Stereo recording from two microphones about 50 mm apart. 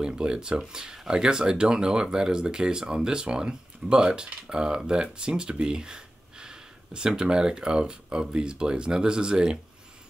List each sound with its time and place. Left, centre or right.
0.0 s speech: centre